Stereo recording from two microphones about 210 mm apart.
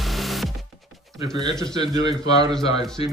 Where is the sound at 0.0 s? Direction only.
Centre (ahead or behind).